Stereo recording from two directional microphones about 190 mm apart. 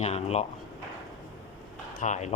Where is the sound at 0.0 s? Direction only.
35° left (ahead or behind).